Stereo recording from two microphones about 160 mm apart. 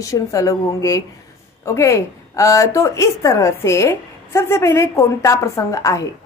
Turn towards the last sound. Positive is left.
turn(degrees=20)  # may be behind; listen again after turning